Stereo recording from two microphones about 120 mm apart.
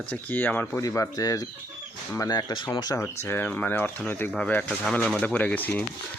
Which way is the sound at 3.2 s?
15° left (ahead or behind).